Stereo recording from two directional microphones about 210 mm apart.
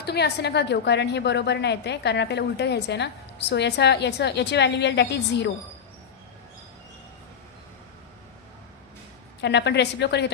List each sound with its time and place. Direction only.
0.0 s a woman's voice: 50° left (ahead or behind)
9.4 s a woman's voice: 55° left (ahead or behind)